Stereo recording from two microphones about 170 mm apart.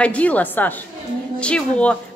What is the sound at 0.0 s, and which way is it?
A woman's voice, 10° left (ahead or behind).